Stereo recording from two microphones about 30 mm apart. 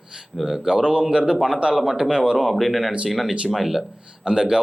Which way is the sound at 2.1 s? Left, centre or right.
Right.